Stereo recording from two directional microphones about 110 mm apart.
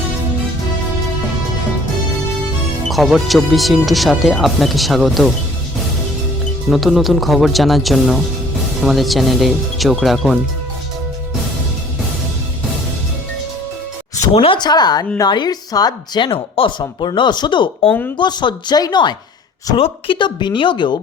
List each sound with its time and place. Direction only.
2.9 s speech: centre (ahead or behind)
6.7 s speech: centre (ahead or behind)
14.3 s speech: 55° left (ahead or behind)
14.6 s speech: 40° left (ahead or behind)
19.7 s speech: 50° left (ahead or behind)